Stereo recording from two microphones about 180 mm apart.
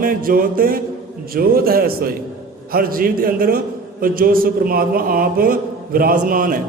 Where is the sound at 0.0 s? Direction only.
50° right (ahead or behind).